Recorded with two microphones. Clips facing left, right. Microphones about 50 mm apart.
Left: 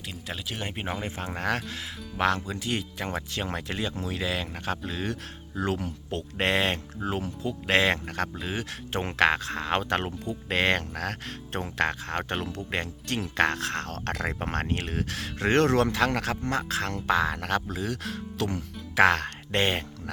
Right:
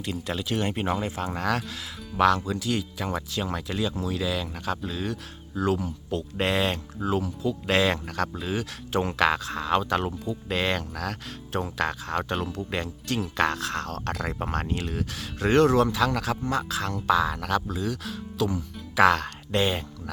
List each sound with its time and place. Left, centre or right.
0.1 s speech: centre
1.0 s speech: left